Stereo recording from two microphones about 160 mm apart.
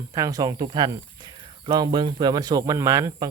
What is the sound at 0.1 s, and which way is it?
Speech, 20° right (ahead or behind).